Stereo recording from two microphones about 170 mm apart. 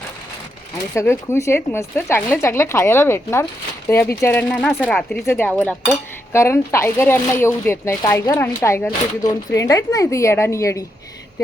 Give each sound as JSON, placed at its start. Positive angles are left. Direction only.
{"t": 0.9, "sound": "speech", "side_deg": 15}